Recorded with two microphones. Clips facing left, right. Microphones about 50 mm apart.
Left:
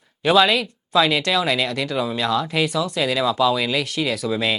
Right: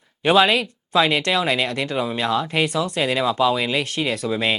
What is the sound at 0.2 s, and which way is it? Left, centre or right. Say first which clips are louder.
Speech: even; right.